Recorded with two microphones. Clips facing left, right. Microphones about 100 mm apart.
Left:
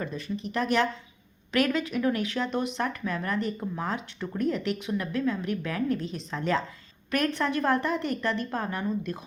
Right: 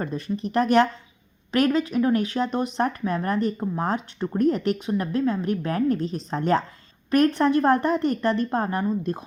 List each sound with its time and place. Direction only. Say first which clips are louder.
0.0 s speech: right 5 dB; 40° right (ahead or behind)
1.5 s speech: right 5 dB; 35° right (ahead or behind)